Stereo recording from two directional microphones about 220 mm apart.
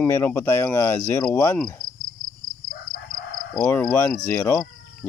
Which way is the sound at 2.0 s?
40° right (ahead or behind).